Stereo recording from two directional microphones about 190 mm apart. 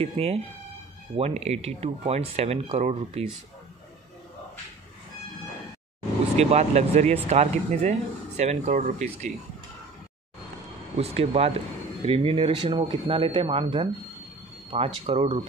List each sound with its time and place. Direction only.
0.0 s speech: 30° right (ahead or behind)
6.3 s speech: 35° right (ahead or behind)
11.0 s speech: 35° right (ahead or behind)
15.0 s speech: 35° right (ahead or behind)